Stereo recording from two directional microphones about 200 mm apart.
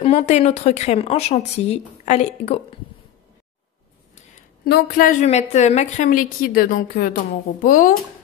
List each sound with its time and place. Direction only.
0.0 s a woman's voice: 35° left (ahead or behind)
4.6 s a woman's voice: 50° left (ahead or behind)